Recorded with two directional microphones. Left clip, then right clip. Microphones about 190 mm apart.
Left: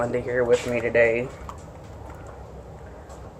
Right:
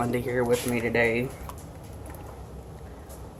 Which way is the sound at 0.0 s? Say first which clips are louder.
Left 3 dB; 60° right (ahead or behind).